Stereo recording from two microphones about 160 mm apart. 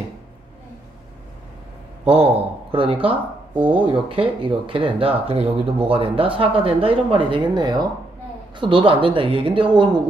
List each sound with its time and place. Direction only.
2.0 s speech: 40° right (ahead or behind)